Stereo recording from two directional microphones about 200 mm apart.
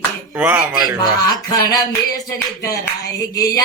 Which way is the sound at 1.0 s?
20° left (ahead or behind).